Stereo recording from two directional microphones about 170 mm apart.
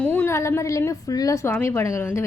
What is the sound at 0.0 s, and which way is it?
A woman's voice, 10° left (ahead or behind).